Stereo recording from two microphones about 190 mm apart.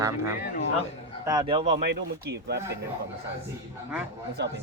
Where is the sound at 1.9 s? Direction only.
65° right (ahead or behind).